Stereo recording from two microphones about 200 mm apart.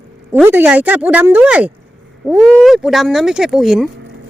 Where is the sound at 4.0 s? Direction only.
60° right (ahead or behind).